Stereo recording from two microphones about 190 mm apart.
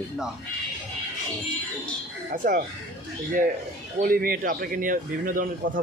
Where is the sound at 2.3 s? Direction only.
50° right (ahead or behind).